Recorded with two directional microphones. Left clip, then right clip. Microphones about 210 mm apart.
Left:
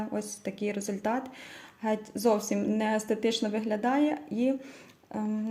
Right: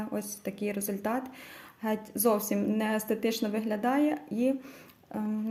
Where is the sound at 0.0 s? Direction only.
Centre (ahead or behind).